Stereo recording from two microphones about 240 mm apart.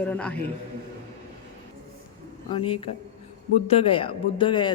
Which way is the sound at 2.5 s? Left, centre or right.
Left.